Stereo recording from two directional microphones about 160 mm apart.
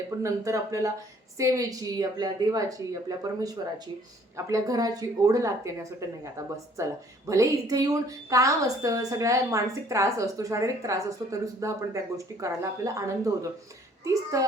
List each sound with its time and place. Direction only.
0.2 s a woman's voice: 20° right (ahead or behind)